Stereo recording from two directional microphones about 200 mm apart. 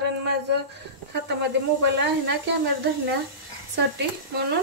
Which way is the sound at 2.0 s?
60° right (ahead or behind).